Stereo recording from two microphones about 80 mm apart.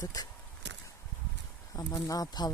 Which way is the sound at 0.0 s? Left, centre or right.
Left.